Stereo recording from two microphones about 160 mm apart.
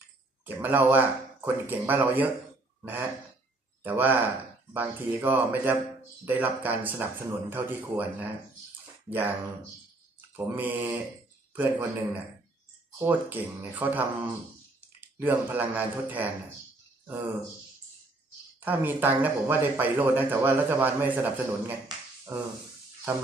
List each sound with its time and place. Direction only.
0.5 s speech: 10° right (ahead or behind)
10.3 s speech: 15° right (ahead or behind)
18.6 s speech: 10° right (ahead or behind)
21.8 s finger snapping: 15° right (ahead or behind)
23.1 s speech: 10° right (ahead or behind)